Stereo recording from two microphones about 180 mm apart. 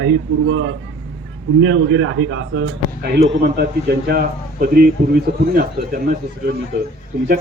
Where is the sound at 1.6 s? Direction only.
90° right.